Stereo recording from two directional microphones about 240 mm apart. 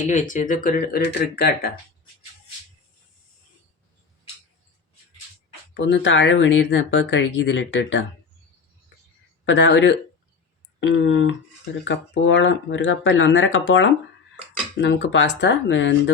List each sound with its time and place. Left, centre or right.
0.1 s speech: left
5.7 s speech: left
9.5 s speech: left